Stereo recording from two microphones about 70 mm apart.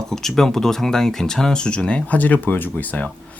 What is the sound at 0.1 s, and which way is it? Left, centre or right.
Speech, centre.